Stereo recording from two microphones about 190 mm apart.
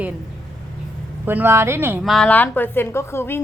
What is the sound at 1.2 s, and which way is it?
Speech, 10° right (ahead or behind).